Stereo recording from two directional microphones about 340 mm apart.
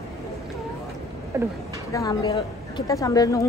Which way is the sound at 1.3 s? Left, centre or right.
Centre.